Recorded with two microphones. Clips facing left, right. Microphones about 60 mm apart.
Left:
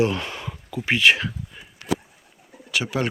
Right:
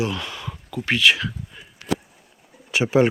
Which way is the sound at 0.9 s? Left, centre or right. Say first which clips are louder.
Left 1 dB; left.